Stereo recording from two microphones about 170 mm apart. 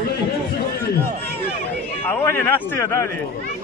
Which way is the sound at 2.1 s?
10° left (ahead or behind).